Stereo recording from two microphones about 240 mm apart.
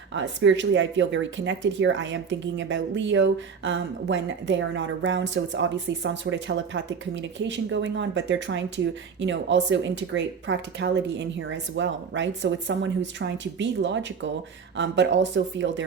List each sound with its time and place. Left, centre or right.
0.1 s speech: right